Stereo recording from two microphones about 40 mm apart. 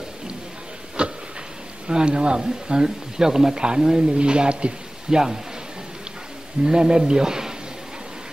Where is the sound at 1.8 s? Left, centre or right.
Right.